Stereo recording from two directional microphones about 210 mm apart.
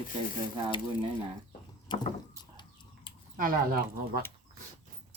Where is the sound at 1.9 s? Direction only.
20° left (ahead or behind).